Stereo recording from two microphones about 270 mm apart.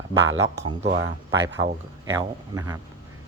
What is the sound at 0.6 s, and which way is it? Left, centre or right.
Speech, right.